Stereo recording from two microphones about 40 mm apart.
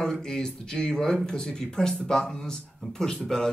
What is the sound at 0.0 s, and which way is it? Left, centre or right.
Speech, centre.